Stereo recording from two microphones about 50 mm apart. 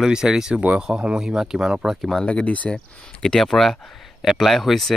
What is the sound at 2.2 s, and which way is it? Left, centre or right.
Speech, left.